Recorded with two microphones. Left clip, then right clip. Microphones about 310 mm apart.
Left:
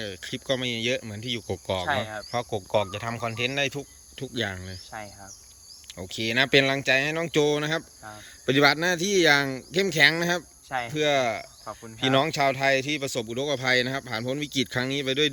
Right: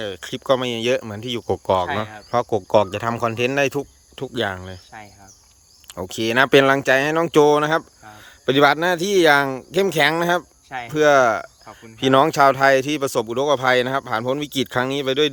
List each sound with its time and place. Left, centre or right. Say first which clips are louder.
0.0 s speech: right 6 dB; centre